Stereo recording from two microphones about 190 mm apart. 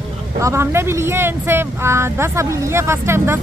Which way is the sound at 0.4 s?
15° right (ahead or behind).